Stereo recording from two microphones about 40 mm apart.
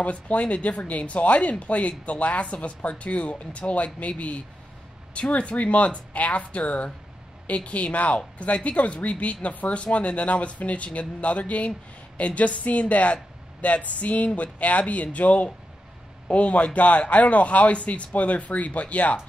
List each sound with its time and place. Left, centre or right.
0.0 s speech: left